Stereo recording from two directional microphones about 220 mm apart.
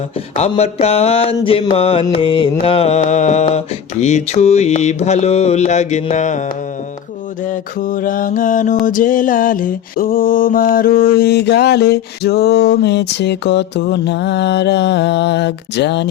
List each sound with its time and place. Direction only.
0.3 s mantra: 30° left (ahead or behind)
7.4 s mantra: 40° left (ahead or behind)